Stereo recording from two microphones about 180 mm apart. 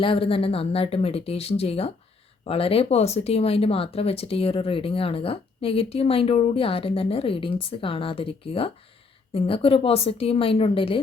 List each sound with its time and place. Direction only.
0.0 s speech: 30° left (ahead or behind)